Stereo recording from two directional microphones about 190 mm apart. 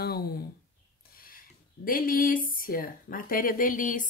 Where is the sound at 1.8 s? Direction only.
50° left (ahead or behind).